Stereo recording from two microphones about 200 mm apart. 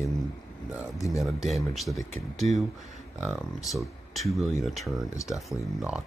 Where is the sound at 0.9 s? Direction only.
15° left (ahead or behind).